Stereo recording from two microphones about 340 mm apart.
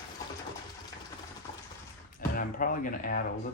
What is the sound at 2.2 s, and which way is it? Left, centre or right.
Speech, left.